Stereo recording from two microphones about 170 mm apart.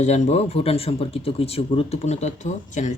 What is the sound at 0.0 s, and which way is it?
Speech, 40° left (ahead or behind).